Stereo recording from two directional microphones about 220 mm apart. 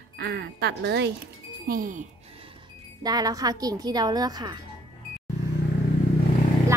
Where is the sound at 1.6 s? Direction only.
40° right (ahead or behind).